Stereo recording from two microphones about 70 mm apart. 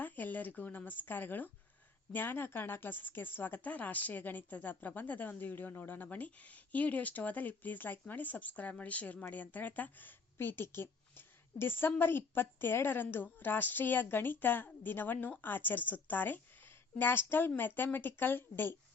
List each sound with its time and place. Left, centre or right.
0.0 s a woman's voice: left